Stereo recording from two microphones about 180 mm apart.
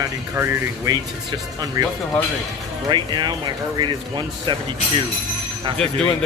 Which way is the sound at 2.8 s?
25° right (ahead or behind).